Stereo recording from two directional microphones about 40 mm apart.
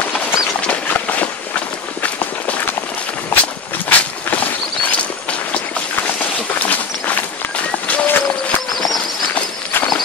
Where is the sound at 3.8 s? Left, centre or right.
Left.